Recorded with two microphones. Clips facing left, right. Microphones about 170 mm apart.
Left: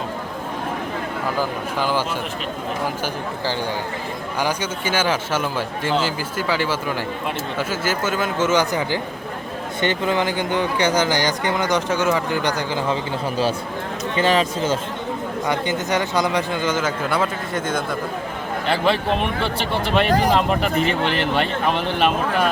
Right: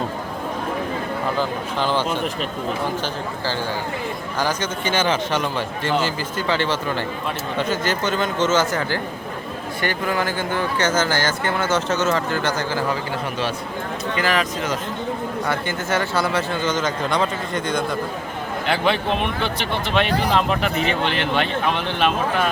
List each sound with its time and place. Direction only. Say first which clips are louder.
1.4 s speech: even; 10° left (ahead or behind)
4.4 s speech: even; 10° left (ahead or behind)
14.2 s speech: left 4 dB; 30° left (ahead or behind)
15.4 s speech: left 3 dB; 15° left (ahead or behind); by 19.3 s centre (ahead or behind)
20.1 s speech: left 4 dB; 45° left (ahead or behind)
20.3 s speech: left 1 dB; centre (ahead or behind)